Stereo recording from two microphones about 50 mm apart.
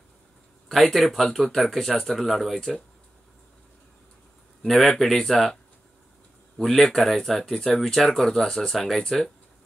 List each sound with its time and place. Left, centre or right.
0.7 s speech: centre
4.6 s speech: centre
6.6 s speech: centre